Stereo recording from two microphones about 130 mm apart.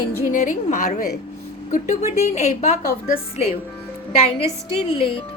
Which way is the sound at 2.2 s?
60° left (ahead or behind).